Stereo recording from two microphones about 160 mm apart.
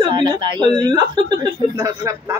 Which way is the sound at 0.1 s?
30° right (ahead or behind).